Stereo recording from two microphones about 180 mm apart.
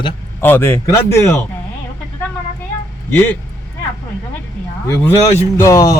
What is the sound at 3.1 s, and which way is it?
Speech, 10° left (ahead or behind).